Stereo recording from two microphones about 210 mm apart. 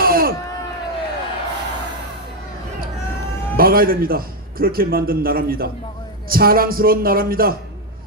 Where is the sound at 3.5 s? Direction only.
45° right (ahead or behind).